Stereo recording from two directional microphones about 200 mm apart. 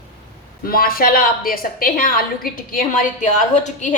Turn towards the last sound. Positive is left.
turn(degrees=35)  # may be behind; listen again after turning